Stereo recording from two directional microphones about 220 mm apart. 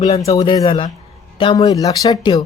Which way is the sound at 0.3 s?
20° left (ahead or behind).